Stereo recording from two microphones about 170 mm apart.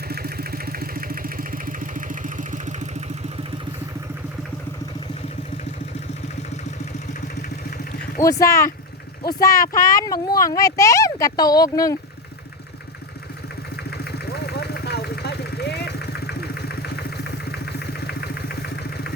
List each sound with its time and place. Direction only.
0.1 s engine: 65° right (ahead or behind); by 2.9 s 45° right (ahead or behind)
8.2 s speech: 20° left (ahead or behind)
14.0 s vehicle: 70° left (ahead or behind)